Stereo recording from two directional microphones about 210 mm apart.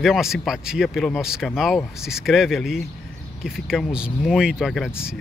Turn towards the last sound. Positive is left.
turn(degrees=0)  # may be behind; listen again after turning